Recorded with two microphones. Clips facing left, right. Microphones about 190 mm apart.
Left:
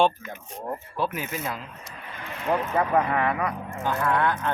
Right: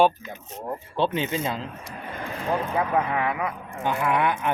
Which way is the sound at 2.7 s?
5° right (ahead or behind).